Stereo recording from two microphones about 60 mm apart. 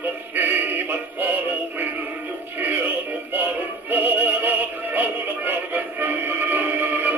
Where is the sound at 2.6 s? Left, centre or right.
Right.